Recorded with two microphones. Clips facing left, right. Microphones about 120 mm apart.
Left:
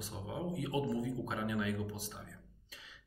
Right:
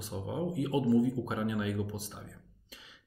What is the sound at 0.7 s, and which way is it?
Speech, 20° right (ahead or behind).